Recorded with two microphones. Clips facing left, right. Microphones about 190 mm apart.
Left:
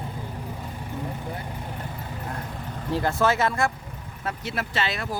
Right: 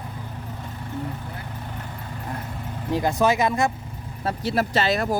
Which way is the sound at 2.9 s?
15° right (ahead or behind).